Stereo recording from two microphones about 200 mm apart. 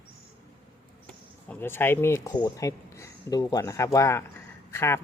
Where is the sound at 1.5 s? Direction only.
10° left (ahead or behind).